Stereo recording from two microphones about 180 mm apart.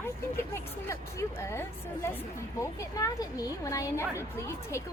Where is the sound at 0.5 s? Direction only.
15° left (ahead or behind).